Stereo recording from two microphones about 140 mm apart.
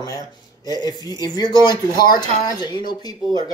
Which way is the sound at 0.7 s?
30° left (ahead or behind).